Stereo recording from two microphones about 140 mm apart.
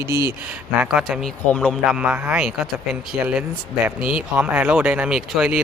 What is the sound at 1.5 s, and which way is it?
Speech, 10° left (ahead or behind).